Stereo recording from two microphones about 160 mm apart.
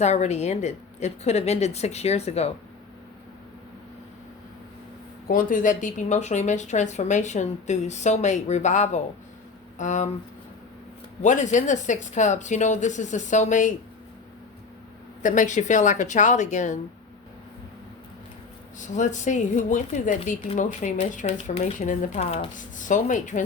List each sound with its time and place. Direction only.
0.0 s speech: 45° left (ahead or behind)
5.3 s speech: 55° left (ahead or behind)
11.2 s speech: 50° left (ahead or behind)
15.2 s speech: 55° left (ahead or behind)
18.8 s speech: 50° left (ahead or behind)
22.5 s speech: 55° left (ahead or behind)